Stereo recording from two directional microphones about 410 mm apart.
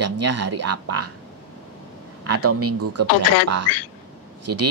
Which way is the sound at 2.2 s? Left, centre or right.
Right.